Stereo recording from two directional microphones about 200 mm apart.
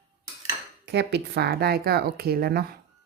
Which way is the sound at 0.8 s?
55° right (ahead or behind).